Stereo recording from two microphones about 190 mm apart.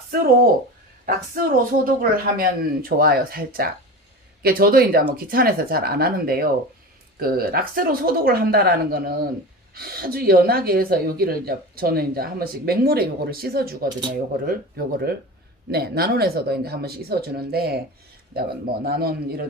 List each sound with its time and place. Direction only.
1.0 s speech: 50° right (ahead or behind)